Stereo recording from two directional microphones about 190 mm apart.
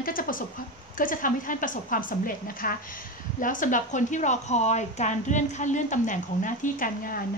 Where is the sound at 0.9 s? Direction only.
45° left (ahead or behind).